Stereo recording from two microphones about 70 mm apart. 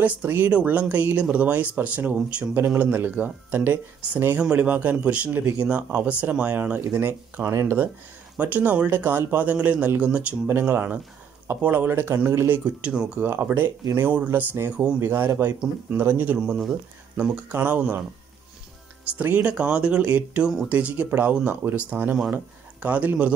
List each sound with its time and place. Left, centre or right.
0.0 s speech: right
11.9 s speech: right
12.8 s speech: centre
13.2 s speech: right
16.3 s speech: centre
19.0 s speech: right